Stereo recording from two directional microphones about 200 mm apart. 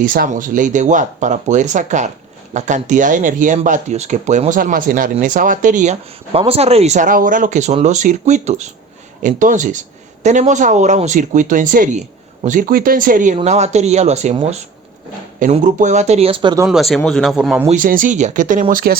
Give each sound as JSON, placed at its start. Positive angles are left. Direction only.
{"t": 0.0, "sound": "speech", "side_deg": -45}
{"t": 16.6, "sound": "speech", "side_deg": 0}
{"t": 17.7, "sound": "speech", "side_deg": -40}